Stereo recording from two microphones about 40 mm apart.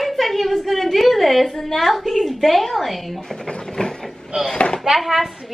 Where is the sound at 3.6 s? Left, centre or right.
Centre.